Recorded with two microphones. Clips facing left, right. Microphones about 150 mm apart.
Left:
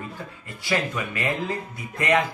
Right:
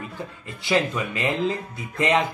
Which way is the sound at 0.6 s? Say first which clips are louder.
Right 3 dB; 20° right (ahead or behind).